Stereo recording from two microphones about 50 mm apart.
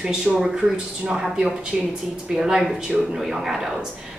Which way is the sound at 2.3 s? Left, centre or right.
Centre.